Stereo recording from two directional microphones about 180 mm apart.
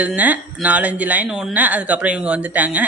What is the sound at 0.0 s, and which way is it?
Speech, 10° right (ahead or behind).